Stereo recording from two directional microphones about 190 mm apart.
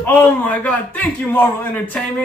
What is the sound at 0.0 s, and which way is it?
A man's voice, 10° left (ahead or behind).